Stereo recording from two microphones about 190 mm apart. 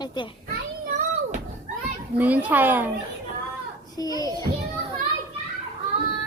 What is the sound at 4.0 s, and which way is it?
Speech, 20° left (ahead or behind).